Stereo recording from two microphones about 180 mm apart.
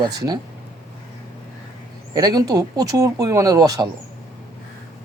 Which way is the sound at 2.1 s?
20° right (ahead or behind).